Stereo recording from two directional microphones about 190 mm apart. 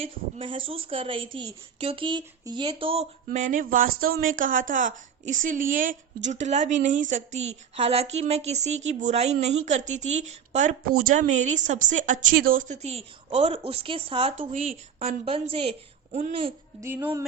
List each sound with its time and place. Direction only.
0.0 s a woman's voice: 25° right (ahead or behind)
3.2 s a woman's voice: 40° right (ahead or behind)
16.8 s speech: 10° right (ahead or behind)